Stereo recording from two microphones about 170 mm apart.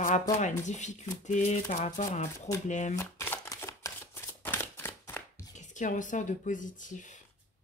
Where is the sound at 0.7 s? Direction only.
45° left (ahead or behind).